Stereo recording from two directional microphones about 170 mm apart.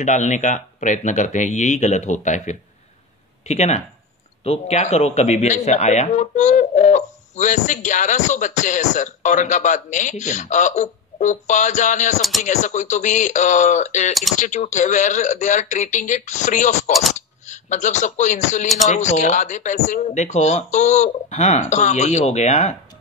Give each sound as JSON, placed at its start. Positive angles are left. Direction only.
{"t": 0.0, "sound": "speech", "side_deg": 45}